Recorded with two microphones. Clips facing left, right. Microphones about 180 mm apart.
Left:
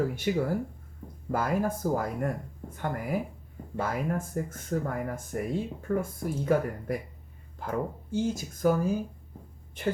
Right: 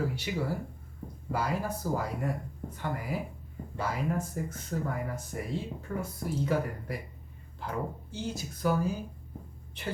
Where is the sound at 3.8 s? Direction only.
50° left (ahead or behind).